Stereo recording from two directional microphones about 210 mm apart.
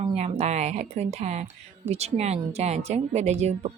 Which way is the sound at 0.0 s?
30° right (ahead or behind).